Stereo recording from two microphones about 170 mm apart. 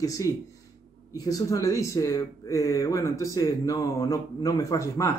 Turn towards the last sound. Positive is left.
turn(degrees=20)  # may be behind; listen again after turning